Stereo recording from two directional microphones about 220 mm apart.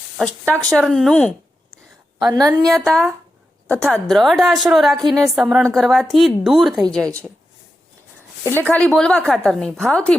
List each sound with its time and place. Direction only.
0.2 s a woman's voice: 5° left (ahead or behind)
2.3 s a woman's voice: 15° right (ahead or behind)
2.6 s a woman's voice: centre (ahead or behind)
8.4 s a woman's voice: 10° left (ahead or behind)